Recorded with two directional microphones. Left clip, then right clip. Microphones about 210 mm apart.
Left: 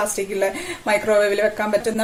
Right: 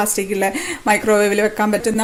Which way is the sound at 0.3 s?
45° right (ahead or behind).